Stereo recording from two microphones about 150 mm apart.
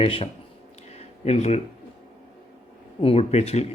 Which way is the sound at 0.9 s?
45° left (ahead or behind).